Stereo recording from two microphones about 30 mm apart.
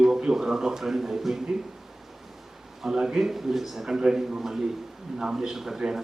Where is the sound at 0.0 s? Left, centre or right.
Right.